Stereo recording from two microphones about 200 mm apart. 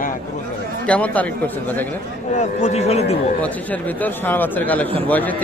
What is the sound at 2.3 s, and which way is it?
Speech, 35° left (ahead or behind).